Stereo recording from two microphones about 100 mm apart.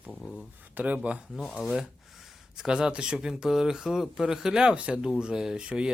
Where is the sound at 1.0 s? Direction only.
Centre (ahead or behind).